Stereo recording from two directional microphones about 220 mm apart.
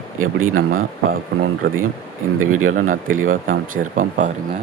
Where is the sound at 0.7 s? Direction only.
40° right (ahead or behind).